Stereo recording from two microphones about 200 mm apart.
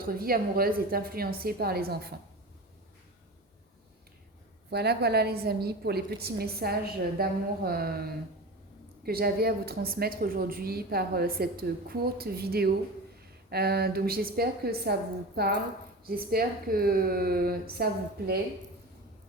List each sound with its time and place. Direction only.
0.0 s a woman's voice: 45° right (ahead or behind)
4.7 s a woman's voice: 55° right (ahead or behind)